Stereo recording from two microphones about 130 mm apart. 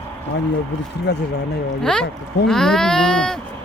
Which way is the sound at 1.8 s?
5° left (ahead or behind).